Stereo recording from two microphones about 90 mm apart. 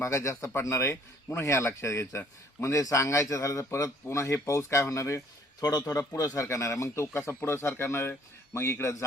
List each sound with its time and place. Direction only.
0.0 s a man's voice: 35° left (ahead or behind)